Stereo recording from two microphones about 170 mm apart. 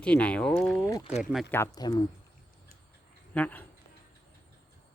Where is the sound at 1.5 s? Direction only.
20° left (ahead or behind).